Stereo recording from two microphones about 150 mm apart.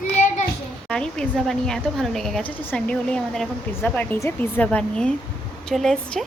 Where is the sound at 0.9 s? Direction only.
5° left (ahead or behind).